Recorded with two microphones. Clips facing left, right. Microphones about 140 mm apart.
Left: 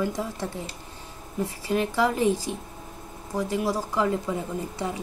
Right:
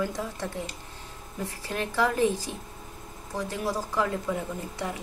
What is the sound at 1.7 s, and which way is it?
Speech, 15° left (ahead or behind).